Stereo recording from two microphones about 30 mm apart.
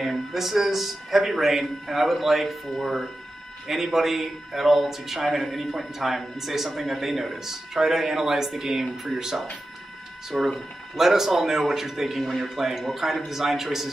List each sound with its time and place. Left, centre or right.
0.0 s speech: centre
3.6 s speech: centre; by 10.5 s right
11.0 s speech: centre